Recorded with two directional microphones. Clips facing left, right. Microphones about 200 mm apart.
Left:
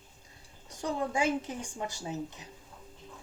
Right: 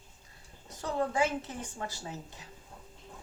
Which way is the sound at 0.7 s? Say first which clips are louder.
Right 1 dB; 15° left (ahead or behind).